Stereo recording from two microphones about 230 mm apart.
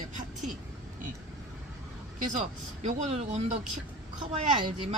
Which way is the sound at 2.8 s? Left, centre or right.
Right.